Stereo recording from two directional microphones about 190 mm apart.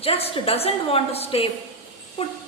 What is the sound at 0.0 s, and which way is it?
A woman's voice, 30° left (ahead or behind).